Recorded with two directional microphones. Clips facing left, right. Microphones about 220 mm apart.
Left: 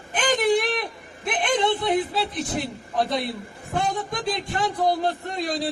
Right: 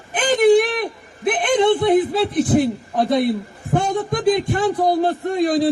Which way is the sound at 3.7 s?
50° right (ahead or behind).